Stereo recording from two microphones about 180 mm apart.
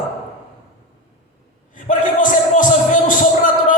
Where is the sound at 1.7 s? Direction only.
45° left (ahead or behind).